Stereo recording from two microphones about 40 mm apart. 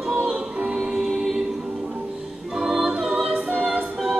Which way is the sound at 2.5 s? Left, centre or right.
Centre.